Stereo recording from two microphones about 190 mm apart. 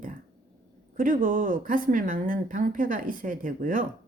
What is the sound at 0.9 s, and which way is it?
Speech, 45° right (ahead or behind).